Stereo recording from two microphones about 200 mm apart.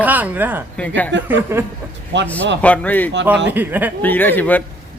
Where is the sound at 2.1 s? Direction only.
60° right (ahead or behind).